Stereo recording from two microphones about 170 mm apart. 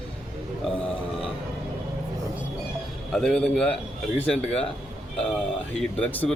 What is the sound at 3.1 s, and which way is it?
A man's voice, 5° left (ahead or behind).